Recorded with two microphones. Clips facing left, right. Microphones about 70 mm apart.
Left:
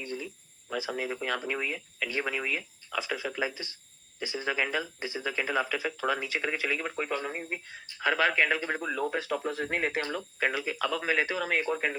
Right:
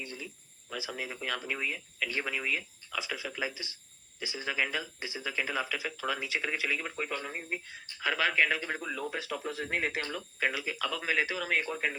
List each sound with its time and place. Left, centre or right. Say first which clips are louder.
0.0 s cricket: left 5 dB; left
0.7 s speech: left 6 dB; left